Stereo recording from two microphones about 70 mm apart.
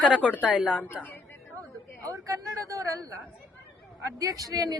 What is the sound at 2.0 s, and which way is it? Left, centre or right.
Speech, right.